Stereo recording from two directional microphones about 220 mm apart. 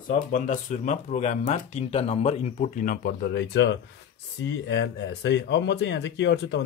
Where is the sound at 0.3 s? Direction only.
35° left (ahead or behind).